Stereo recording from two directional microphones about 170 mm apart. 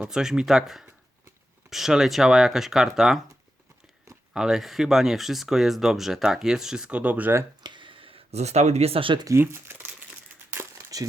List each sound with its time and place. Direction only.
0.0 s speech: 5° right (ahead or behind)
4.4 s speech: centre (ahead or behind)
7.6 s a sound: 30° right (ahead or behind); by 9.9 s 10° right (ahead or behind)
10.5 s crumpling: 15° right (ahead or behind)